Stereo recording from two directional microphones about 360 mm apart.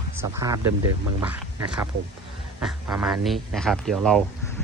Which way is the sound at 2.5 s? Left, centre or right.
Centre.